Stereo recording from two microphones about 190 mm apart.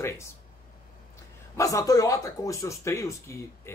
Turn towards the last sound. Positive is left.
turn(degrees=15)  # may be behind; listen again after turning